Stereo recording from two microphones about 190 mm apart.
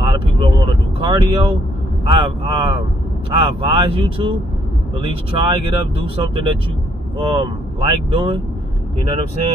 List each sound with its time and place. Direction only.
0.0 s vehicle: 25° right (ahead or behind)
0.9 s speech: 30° right (ahead or behind)